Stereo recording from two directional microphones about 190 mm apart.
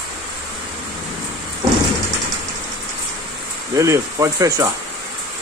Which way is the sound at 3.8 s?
15° right (ahead or behind).